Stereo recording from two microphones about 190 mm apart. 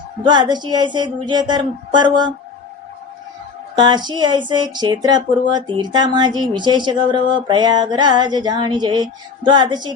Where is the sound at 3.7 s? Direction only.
25° right (ahead or behind).